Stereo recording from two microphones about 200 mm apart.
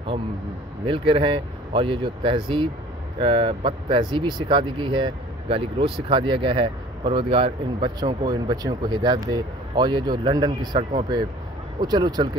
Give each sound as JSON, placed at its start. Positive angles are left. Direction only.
{"t": 0.8, "sound": "speech", "side_deg": -25}